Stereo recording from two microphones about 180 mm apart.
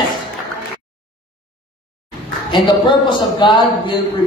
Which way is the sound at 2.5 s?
25° left (ahead or behind).